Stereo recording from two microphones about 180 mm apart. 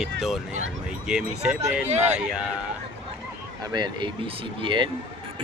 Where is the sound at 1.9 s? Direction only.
40° right (ahead or behind).